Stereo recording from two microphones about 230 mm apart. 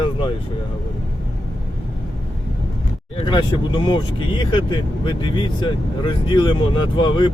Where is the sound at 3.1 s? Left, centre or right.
Left.